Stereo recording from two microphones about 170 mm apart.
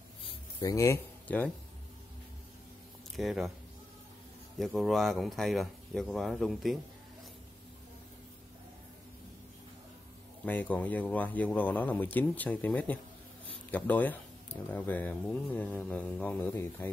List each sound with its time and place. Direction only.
0.2 s a sound: 20° left (ahead or behind)
3.2 s speech: centre (ahead or behind)
4.6 s speech: centre (ahead or behind)
10.4 s speech: 10° left (ahead or behind)